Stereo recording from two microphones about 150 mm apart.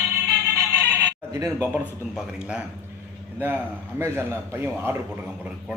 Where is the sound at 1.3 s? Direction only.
15° right (ahead or behind).